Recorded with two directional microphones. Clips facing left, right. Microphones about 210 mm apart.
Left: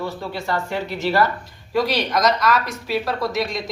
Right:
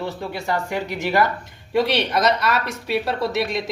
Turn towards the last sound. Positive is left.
turn(degrees=-25)  # may be behind; listen again after turning